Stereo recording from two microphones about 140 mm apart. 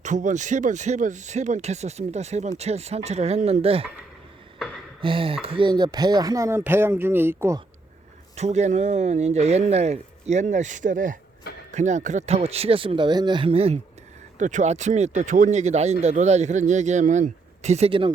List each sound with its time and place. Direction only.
0.0 s speech: 60° right (ahead or behind); by 3.8 s 45° right (ahead or behind)
4.9 s speech: 40° right (ahead or behind); by 7.6 s 15° right (ahead or behind)
8.4 s speech: 55° right (ahead or behind); by 11.2 s 70° right (ahead or behind)
11.7 s speech: 55° right (ahead or behind)
14.3 s speech: 60° right (ahead or behind); by 18.1 s 40° right (ahead or behind)